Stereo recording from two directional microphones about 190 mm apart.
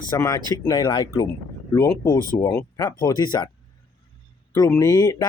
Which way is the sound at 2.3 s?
20° left (ahead or behind).